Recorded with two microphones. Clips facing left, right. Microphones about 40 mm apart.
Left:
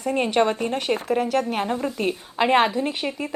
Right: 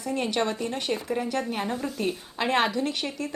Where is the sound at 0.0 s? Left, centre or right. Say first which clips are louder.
Left 6 dB; left.